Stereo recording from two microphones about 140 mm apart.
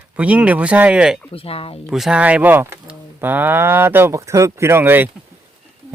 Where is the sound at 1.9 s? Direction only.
5° right (ahead or behind).